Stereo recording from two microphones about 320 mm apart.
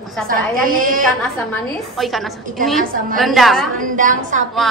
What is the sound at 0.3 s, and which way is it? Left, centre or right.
Speech, right.